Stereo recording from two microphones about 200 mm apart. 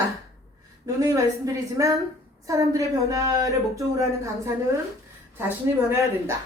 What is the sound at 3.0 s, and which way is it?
Speech, 15° right (ahead or behind).